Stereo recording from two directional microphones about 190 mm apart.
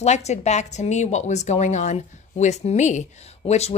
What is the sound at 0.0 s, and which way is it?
A woman's voice, 35° left (ahead or behind).